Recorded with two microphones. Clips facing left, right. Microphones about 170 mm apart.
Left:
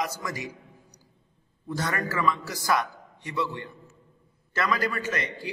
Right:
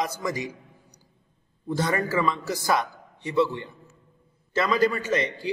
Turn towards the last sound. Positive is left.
turn(degrees=-25)  # may be behind; listen again after turning